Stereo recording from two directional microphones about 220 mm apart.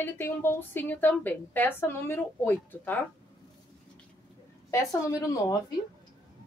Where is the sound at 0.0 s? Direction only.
10° left (ahead or behind).